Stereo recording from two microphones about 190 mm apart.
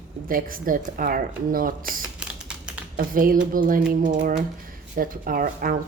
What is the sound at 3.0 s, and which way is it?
A woman's voice, 45° right (ahead or behind).